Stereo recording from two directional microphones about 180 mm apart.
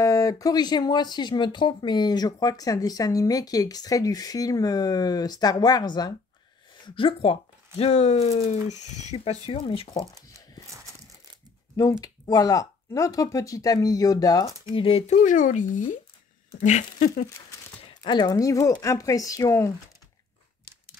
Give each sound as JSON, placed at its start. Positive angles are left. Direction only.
{"t": 0.0, "sound": "speech", "side_deg": 20}
{"t": 12.0, "sound": "speech", "side_deg": 20}
{"t": 18.0, "sound": "speech", "side_deg": 25}